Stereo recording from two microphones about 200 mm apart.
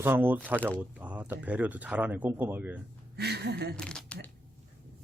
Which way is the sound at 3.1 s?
55° right (ahead or behind).